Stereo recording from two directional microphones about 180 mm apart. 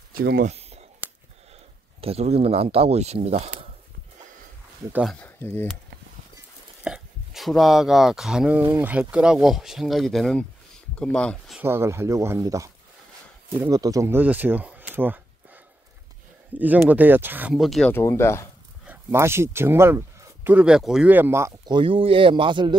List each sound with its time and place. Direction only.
0.1 s speech: 55° right (ahead or behind)
0.5 s a sound: 35° right (ahead or behind)
2.0 s speech: 35° right (ahead or behind)
3.4 s a sound: 50° right (ahead or behind)
5.1 s speech: 10° left (ahead or behind)
6.8 s speech: centre (ahead or behind)
11.6 s speech: 15° right (ahead or behind)
17.9 s speech: 15° left (ahead or behind)
18.9 s speech: 15° right (ahead or behind)